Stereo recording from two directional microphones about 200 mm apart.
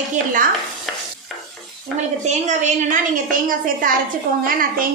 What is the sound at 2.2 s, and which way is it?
A woman's voice, 35° right (ahead or behind).